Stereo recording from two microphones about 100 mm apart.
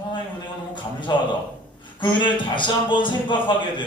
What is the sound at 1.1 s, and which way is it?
A man's voice, 45° left (ahead or behind).